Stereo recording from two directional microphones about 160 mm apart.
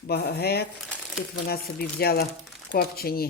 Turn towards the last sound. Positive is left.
turn(degrees=70)  # may be behind; listen again after turning